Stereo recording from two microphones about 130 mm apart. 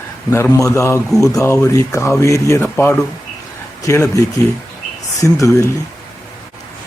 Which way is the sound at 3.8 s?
25° left (ahead or behind).